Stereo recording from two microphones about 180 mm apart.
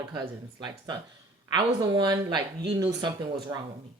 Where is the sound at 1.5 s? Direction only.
25° right (ahead or behind).